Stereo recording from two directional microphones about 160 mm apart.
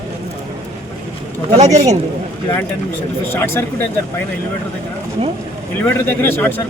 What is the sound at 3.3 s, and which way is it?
Speech, 15° left (ahead or behind).